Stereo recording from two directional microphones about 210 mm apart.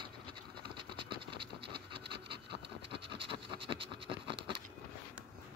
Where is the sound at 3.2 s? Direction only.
25° right (ahead or behind).